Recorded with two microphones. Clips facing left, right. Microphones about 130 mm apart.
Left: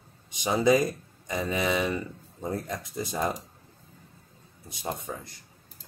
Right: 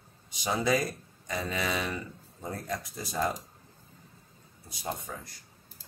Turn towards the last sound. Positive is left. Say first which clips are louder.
# left 3 dB
turn(degrees=25)  # may be behind; listen again after turning